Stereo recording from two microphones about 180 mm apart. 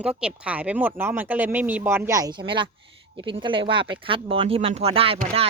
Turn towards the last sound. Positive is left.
turn(degrees=-30)  # may be behind; listen again after turning